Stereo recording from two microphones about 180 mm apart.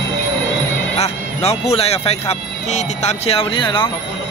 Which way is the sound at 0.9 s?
35° left (ahead or behind).